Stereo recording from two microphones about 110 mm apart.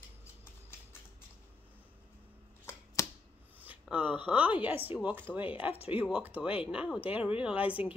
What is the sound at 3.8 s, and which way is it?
Speech, 10° right (ahead or behind).